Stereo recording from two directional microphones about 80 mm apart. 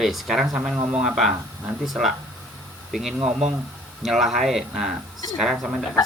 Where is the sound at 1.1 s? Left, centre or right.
Centre.